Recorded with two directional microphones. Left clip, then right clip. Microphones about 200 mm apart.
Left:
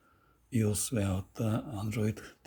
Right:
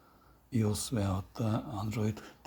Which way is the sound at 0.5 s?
15° left (ahead or behind).